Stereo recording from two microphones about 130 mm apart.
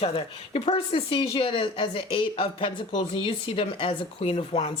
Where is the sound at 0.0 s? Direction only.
45° left (ahead or behind).